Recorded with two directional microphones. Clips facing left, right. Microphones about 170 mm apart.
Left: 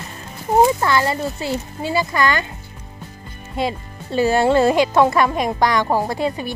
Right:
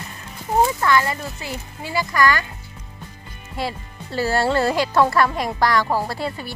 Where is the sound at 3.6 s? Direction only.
20° left (ahead or behind).